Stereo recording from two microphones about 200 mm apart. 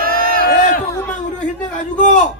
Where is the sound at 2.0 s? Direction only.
40° left (ahead or behind).